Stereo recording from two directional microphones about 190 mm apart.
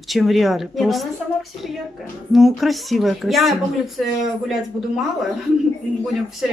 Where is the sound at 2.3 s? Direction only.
Centre (ahead or behind).